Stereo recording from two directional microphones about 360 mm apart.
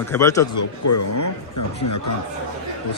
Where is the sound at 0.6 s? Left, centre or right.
Left.